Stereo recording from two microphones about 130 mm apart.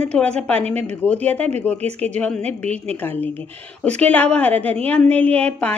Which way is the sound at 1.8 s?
55° right (ahead or behind).